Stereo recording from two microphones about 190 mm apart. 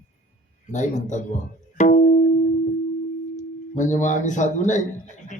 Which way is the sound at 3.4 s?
40° left (ahead or behind).